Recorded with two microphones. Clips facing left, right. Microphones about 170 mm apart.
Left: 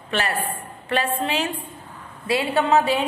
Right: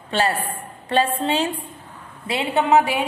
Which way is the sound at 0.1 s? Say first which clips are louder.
Right 3 dB; 30° right (ahead or behind).